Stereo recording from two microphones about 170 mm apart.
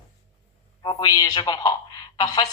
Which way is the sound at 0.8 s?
25° left (ahead or behind).